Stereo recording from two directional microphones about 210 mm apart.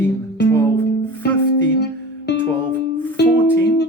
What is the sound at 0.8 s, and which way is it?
Music, 55° left (ahead or behind).